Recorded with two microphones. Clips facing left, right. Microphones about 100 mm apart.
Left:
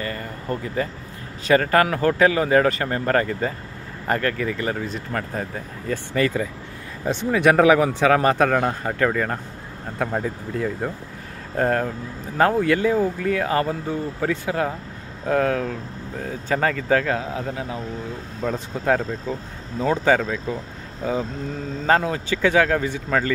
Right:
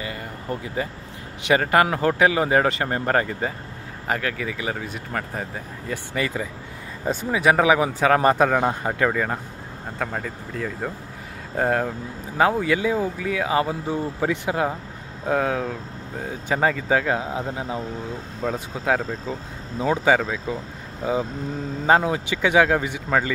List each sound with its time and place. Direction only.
0.0 s speech: 15° right (ahead or behind)
9.9 s speech: 5° left (ahead or behind)
11.5 s speech: 10° right (ahead or behind)
18.4 s speech: 5° right (ahead or behind)